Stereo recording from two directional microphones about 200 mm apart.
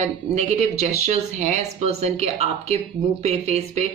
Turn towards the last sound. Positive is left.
turn(degrees=-35)  # may be behind; listen again after turning